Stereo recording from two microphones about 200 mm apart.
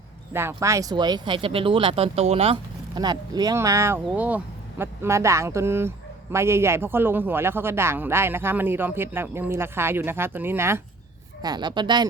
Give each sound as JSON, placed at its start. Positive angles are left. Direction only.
{"t": 0.3, "sound": "a woman's voice", "side_deg": -15}